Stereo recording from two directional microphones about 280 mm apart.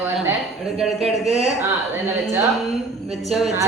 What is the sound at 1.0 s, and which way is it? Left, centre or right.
Speech, right.